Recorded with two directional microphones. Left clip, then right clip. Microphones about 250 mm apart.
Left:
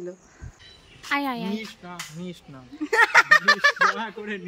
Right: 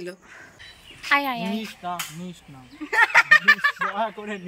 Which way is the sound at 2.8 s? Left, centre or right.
Centre.